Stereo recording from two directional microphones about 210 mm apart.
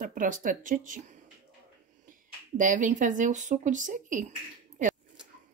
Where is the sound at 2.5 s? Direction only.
40° right (ahead or behind).